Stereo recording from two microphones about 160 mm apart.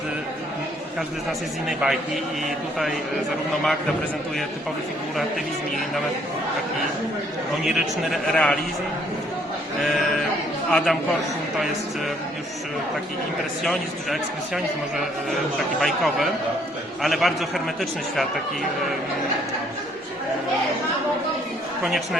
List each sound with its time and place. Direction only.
1.6 s a man's voice: 5° right (ahead or behind)
7.6 s a man's voice: centre (ahead or behind)
9.8 s a man's voice: centre (ahead or behind)
13.7 s a man's voice: centre (ahead or behind)